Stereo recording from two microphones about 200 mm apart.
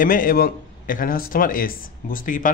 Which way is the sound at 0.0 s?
45° left (ahead or behind).